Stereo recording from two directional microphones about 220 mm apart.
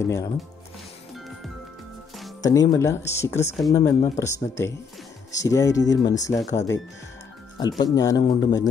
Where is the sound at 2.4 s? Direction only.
15° left (ahead or behind).